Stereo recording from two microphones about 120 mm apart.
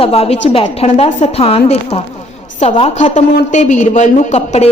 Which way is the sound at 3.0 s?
80° left.